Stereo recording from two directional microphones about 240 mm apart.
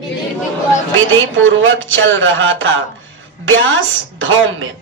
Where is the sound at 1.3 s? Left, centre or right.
Right.